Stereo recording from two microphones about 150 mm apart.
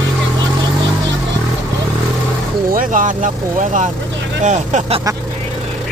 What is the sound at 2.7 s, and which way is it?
Vehicle, 60° right (ahead or behind).